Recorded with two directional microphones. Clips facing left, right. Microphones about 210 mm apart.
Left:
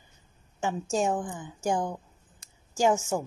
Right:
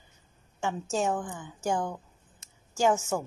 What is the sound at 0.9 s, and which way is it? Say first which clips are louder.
A woman's voice: left 2 dB; 10° left (ahead or behind).